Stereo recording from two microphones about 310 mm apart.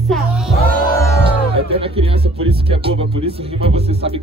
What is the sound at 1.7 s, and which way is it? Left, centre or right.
Speech, centre.